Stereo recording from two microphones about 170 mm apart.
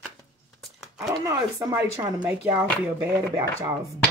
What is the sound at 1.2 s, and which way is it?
Speech, 20° right (ahead or behind).